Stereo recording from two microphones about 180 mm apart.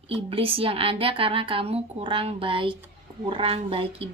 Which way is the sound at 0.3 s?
30° right (ahead or behind).